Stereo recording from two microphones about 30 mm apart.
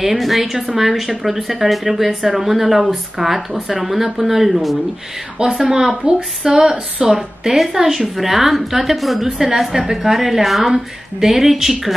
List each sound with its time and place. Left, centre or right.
0.2 s a woman's voice: centre
9.8 s a woman's voice: centre
10.1 s a woman's voice: centre